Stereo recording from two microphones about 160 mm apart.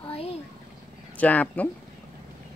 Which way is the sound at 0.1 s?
40° left (ahead or behind).